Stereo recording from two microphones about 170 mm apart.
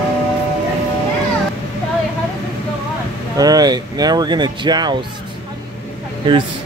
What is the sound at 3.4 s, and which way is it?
Speech, 20° right (ahead or behind).